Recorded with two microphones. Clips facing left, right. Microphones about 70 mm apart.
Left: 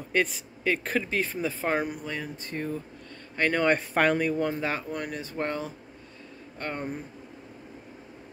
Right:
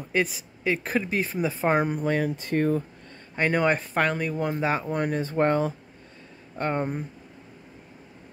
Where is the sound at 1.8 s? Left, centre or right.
Right.